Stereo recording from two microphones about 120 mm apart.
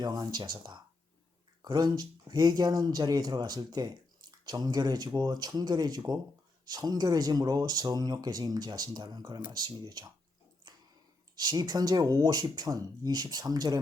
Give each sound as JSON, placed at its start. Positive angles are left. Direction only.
{"t": 0.0, "sound": "speech", "side_deg": -35}
{"t": 10.7, "sound": "a sound", "side_deg": -35}
{"t": 11.3, "sound": "speech", "side_deg": -35}